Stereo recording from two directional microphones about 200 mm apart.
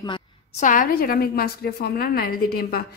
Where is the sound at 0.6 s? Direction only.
40° left (ahead or behind).